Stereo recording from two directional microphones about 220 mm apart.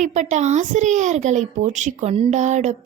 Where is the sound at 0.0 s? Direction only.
35° right (ahead or behind).